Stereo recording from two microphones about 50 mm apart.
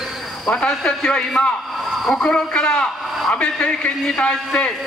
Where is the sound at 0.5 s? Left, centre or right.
Centre.